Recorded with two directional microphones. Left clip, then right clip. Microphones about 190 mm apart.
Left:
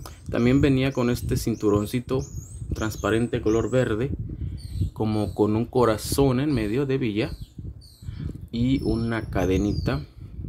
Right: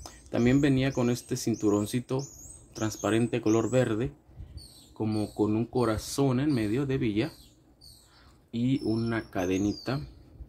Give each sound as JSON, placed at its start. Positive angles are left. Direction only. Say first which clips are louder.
{"t": 0.0, "sound": "speech", "louder": "left 3 dB", "side_deg": 10}
{"t": 4.9, "sound": "speech", "louder": "left 5 dB", "side_deg": 25}
{"t": 8.5, "sound": "speech", "louder": "left 4 dB", "side_deg": 20}